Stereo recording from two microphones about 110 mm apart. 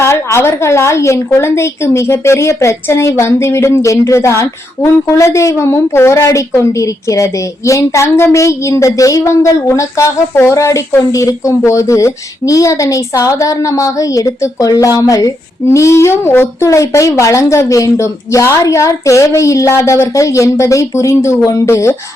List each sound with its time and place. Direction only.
0.0 s a woman's voice: 25° left (ahead or behind)